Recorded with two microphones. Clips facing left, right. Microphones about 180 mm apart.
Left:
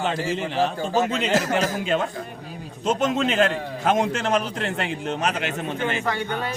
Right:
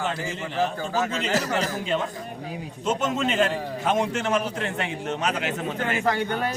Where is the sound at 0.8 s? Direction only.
30° left (ahead or behind).